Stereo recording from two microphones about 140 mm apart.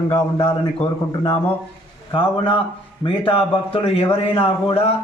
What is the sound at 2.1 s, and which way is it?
Speech, 35° left (ahead or behind).